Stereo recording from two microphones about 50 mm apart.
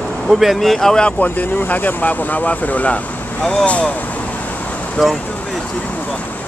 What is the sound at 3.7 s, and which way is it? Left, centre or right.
Vehicle, left.